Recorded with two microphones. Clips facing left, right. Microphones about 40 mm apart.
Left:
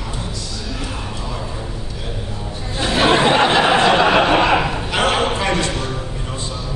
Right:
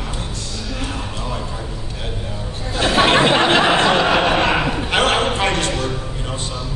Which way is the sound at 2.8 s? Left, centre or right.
Right.